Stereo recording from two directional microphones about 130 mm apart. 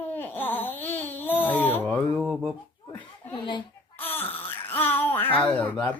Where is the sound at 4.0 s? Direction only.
15° left (ahead or behind).